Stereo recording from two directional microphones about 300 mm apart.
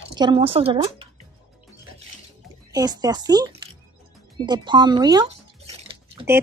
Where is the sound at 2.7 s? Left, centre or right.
Centre.